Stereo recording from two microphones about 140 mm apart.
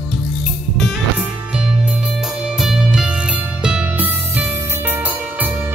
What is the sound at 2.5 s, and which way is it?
Music, 5° right (ahead or behind).